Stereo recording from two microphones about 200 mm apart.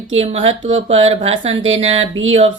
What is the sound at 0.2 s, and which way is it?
Speech, 30° right (ahead or behind).